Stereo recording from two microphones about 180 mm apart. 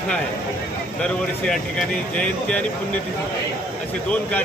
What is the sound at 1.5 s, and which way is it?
Speech, 5° left (ahead or behind).